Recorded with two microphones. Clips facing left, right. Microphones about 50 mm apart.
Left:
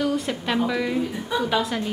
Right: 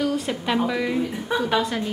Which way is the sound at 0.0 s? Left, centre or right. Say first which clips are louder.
Even; centre.